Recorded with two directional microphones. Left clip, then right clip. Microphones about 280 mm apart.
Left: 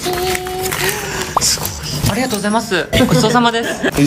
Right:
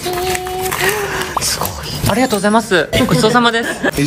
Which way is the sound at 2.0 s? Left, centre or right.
Centre.